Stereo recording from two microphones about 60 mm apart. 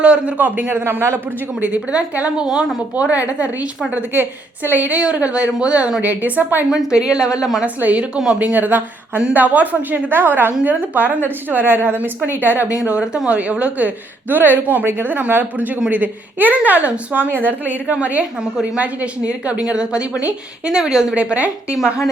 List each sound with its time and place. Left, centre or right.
0.0 s a woman's voice: centre
0.3 s speech: right
1.5 s a woman's voice: right
6.7 s a woman's voice: centre
7.6 s a woman's voice: right
12.7 s a woman's voice: centre
21.2 s a woman's voice: right